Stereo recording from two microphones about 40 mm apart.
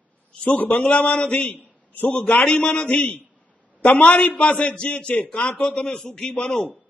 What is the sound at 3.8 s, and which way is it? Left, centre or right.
A man's voice, left.